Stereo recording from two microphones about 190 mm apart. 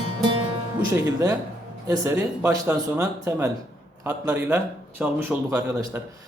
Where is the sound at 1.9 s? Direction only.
15° right (ahead or behind).